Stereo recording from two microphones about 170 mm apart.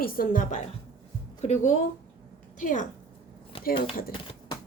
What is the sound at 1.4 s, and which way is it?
Speech, 45° left (ahead or behind).